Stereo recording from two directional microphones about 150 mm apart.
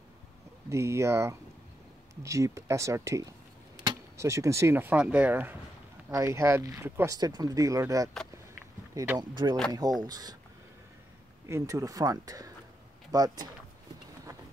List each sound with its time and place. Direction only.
0.7 s speech: 20° right (ahead or behind)
9.3 s speech: 30° right (ahead or behind)
11.4 s speech: 20° right (ahead or behind)
14.3 s a sound: 25° right (ahead or behind)